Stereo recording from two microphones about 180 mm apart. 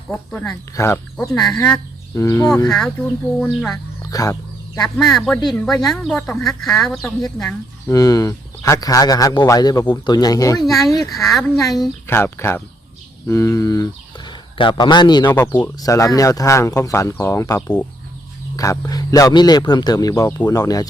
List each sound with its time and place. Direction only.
0.1 s speech: 5° left (ahead or behind)
0.8 s speech: 20° left (ahead or behind)
1.1 s speech: centre (ahead or behind)
2.1 s speech: 15° left (ahead or behind)
2.6 s speech: 5° left (ahead or behind)
4.0 s a sound: 20° left (ahead or behind)
4.8 s speech: centre (ahead or behind)
7.9 s speech: 20° left (ahead or behind)
10.7 s speech: centre (ahead or behind)
12.0 s speech: 15° left (ahead or behind)